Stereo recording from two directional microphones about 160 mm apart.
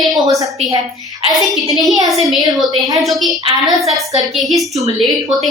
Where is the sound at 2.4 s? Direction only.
25° right (ahead or behind).